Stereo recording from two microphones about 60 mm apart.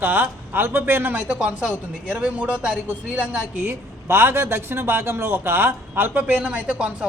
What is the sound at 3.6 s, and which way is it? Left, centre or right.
A man's voice, right.